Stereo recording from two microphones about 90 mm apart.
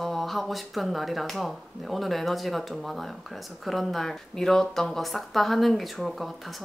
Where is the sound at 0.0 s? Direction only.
Centre (ahead or behind).